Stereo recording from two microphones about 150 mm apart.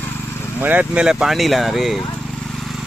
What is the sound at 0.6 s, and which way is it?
Speech, 10° right (ahead or behind).